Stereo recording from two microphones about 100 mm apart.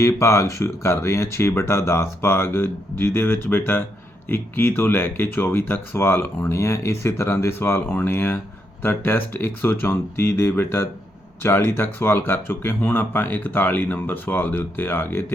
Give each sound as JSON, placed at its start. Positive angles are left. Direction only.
{"t": 0.0, "sound": "speech", "side_deg": 30}